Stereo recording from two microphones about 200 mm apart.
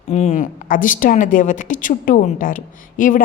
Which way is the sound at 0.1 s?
35° left (ahead or behind).